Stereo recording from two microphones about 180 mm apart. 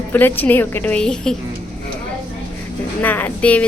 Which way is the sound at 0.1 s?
10° left (ahead or behind).